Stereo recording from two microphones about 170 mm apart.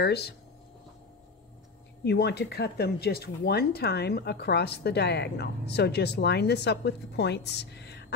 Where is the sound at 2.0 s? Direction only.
75° left (ahead or behind).